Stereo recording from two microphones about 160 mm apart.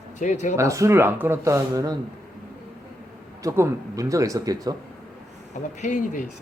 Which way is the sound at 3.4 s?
20° right (ahead or behind).